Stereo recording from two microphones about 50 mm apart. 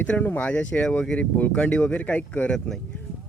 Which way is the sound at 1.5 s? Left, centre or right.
Left.